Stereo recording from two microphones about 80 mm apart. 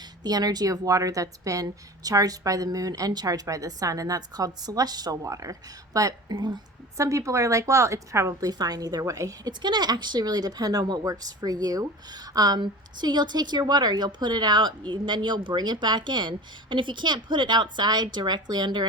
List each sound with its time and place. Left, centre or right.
0.2 s speech: right
5.2 s speech: right
6.3 s speech: right
6.9 s speech: right
9.5 s speech: right
12.5 s a woman's voice: right